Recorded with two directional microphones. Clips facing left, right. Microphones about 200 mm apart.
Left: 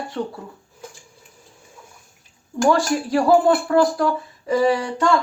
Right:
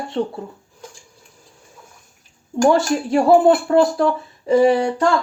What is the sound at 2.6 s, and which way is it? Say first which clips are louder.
Speech: right 2 dB; 25° right (ahead or behind).